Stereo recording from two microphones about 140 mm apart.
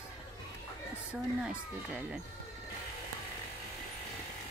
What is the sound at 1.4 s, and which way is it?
Speech, 5° right (ahead or behind).